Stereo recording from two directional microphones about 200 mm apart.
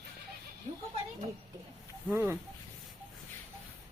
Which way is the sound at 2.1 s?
10° right (ahead or behind).